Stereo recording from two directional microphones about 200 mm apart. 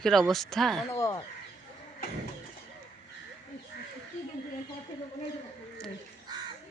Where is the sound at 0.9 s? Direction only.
15° left (ahead or behind).